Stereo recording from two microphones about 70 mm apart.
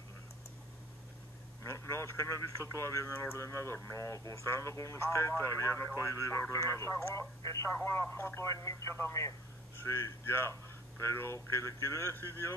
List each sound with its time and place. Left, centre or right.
1.6 s speech: left